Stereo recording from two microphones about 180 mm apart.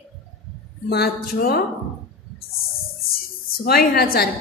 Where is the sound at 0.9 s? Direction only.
60° left (ahead or behind).